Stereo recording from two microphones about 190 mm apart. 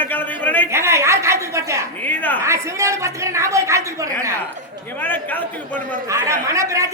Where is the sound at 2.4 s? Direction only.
15° right (ahead or behind).